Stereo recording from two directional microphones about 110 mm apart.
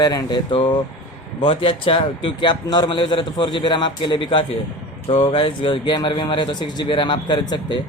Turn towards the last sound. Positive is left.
turn(degrees=45)  # may be behind; listen again after turning